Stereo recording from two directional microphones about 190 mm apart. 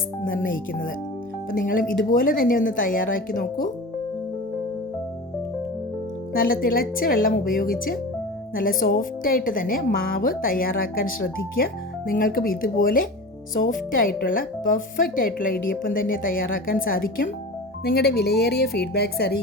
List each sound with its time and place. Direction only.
0.3 s a woman's voice: 45° left (ahead or behind)
6.3 s a woman's voice: 50° left (ahead or behind)